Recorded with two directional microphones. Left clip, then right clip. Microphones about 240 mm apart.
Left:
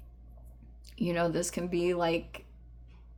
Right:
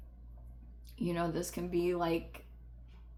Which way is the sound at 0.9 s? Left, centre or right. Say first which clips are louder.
Left 6 dB; left.